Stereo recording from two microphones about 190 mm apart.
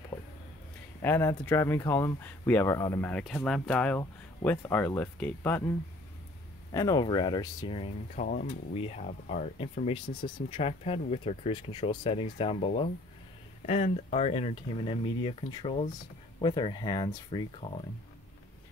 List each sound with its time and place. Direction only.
1.0 s speech: 10° left (ahead or behind)
6.7 s speech: 20° left (ahead or behind)
8.2 s speech: 45° left (ahead or behind)
8.7 s speech: 35° left (ahead or behind)